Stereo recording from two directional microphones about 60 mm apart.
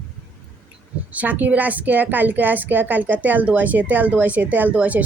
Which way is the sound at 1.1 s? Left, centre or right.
Right.